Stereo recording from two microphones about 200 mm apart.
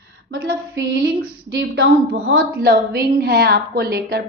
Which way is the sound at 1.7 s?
70° right (ahead or behind).